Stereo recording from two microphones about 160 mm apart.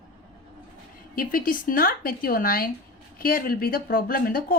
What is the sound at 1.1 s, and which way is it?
Speech, 60° left (ahead or behind).